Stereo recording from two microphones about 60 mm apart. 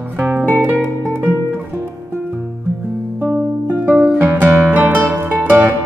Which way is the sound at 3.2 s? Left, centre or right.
Right.